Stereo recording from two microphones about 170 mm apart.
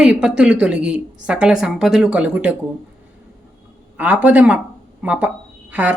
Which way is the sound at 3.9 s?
10° right (ahead or behind).